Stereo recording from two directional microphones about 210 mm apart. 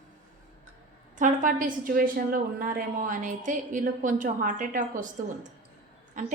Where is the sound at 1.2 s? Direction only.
40° right (ahead or behind).